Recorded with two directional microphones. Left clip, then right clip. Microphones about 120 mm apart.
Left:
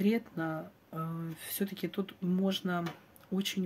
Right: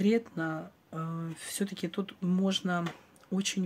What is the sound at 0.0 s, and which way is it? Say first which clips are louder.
Speech: right 3 dB; 35° right (ahead or behind).